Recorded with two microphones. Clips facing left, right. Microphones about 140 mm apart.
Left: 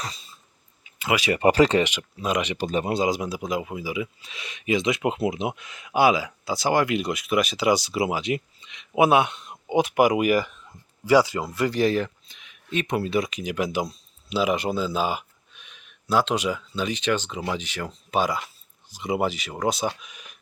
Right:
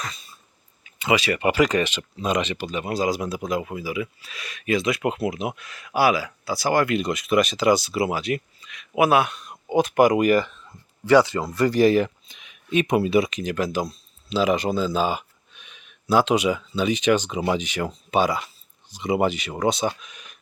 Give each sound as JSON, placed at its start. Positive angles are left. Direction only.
{"t": 0.9, "sound": "a sound", "side_deg": 5}
{"t": 1.4, "sound": "speech", "side_deg": 35}
{"t": 1.8, "sound": "speech", "side_deg": 10}
{"t": 2.6, "sound": "speech", "side_deg": 40}
{"t": 2.9, "sound": "speech", "side_deg": 20}
{"t": 11.5, "sound": "speech", "side_deg": 0}
{"t": 13.3, "sound": "speech", "side_deg": 10}
{"t": 18.1, "sound": "speech", "side_deg": 0}